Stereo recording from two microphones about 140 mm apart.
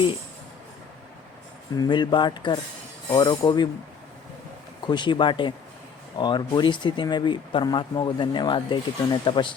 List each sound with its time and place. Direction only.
1.7 s speech: 30° left (ahead or behind)
4.9 s speech: 35° left (ahead or behind)